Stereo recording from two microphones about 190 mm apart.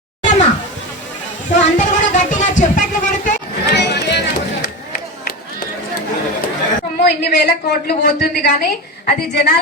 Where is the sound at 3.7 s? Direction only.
65° left (ahead or behind).